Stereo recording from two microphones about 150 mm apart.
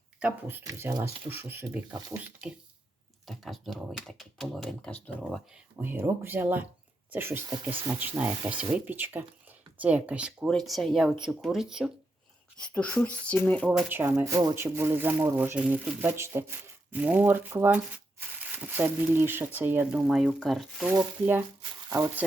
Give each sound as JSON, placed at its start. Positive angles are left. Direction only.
{"t": 0.2, "sound": "speech", "side_deg": -10}
{"t": 5.7, "sound": "speech", "side_deg": -15}
{"t": 12.5, "sound": "speech", "side_deg": 10}
{"t": 13.7, "sound": "speech", "side_deg": -10}
{"t": 20.9, "sound": "speech", "side_deg": -15}